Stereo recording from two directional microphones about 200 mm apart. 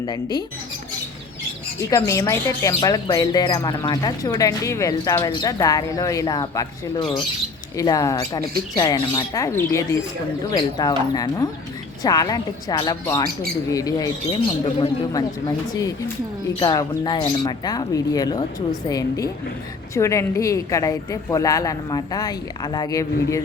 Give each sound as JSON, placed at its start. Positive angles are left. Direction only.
{"t": 0.0, "sound": "speech", "side_deg": 20}
{"t": 1.9, "sound": "a woman's voice", "side_deg": 15}
{"t": 15.1, "sound": "a woman's voice", "side_deg": 15}